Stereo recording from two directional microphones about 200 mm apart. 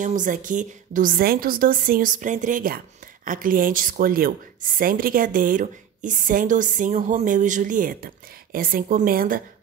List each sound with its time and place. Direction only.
0.0 s a woman's voice: 40° right (ahead or behind)